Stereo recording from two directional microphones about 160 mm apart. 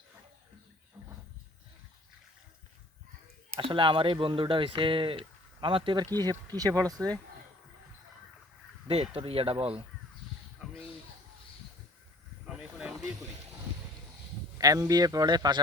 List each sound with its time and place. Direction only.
1.0 s a sound: 10° right (ahead or behind)
3.6 s speech: 30° right (ahead or behind)
6.5 s speech: 15° left (ahead or behind)
7.0 s speech: centre (ahead or behind)
8.9 s speech: 35° right (ahead or behind)
12.5 s snake: 5° right (ahead or behind)
14.6 s speech: 20° right (ahead or behind)